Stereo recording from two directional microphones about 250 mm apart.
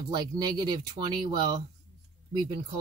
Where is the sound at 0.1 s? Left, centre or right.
Centre.